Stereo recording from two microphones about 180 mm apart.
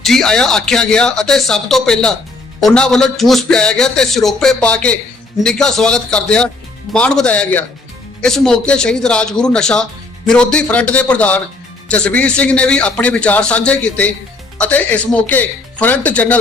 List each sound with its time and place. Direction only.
0.0 s a man's voice: centre (ahead or behind)